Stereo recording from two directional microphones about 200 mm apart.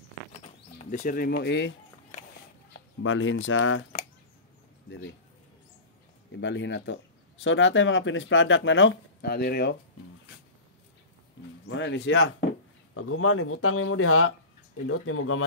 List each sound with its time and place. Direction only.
0.3 s a sound: 40° left (ahead or behind); by 1.7 s 60° left (ahead or behind)
3.0 s speech: 80° left
4.8 s speech: 60° left (ahead or behind)
6.3 s speech: 65° left (ahead or behind)
11.6 s speech: 70° left (ahead or behind)
12.9 s speech: 90° left